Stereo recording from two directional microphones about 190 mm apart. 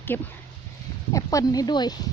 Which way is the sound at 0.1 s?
10° left (ahead or behind).